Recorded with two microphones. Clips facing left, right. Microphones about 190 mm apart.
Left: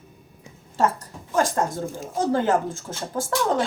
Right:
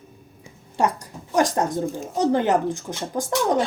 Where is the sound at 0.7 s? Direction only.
15° right (ahead or behind).